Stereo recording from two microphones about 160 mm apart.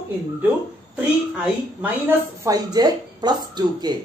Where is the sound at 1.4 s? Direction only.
10° right (ahead or behind).